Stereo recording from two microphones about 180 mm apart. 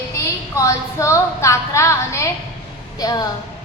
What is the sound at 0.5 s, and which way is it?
A woman's voice, 15° left (ahead or behind).